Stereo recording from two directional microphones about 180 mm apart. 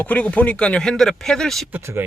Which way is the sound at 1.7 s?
15° right (ahead or behind).